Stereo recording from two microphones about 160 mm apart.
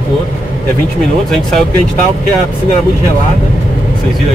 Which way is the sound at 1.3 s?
Centre (ahead or behind).